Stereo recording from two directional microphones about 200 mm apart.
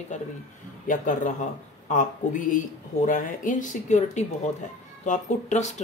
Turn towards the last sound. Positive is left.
turn(degrees=35)  # may be behind; listen again after turning